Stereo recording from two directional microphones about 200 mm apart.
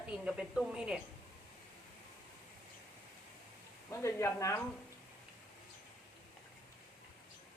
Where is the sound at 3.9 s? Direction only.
15° left (ahead or behind).